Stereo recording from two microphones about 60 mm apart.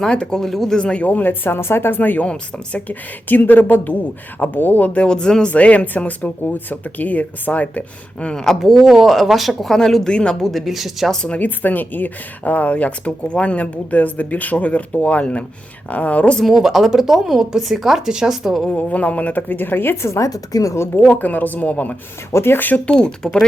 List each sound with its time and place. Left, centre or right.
0.0 s speech: centre
0.8 s speech: centre
5.0 s speech: centre
8.3 s speech: centre
10.4 s speech: centre
11.1 s speech: centre
11.3 s speech: left
16.4 s speech: centre
18.7 s speech: left
20.2 s speech: left
20.7 s speech: left
21.1 s speech: left
22.3 s speech: left
22.9 s speech: centre